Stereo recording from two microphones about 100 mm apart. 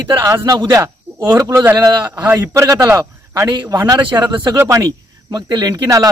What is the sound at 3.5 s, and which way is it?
Speech, 45° right (ahead or behind).